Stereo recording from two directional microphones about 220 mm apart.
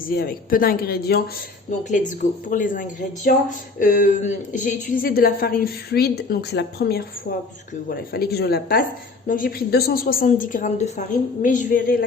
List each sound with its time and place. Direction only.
0.0 s speech: 40° left (ahead or behind)
1.8 s speech: 35° left (ahead or behind)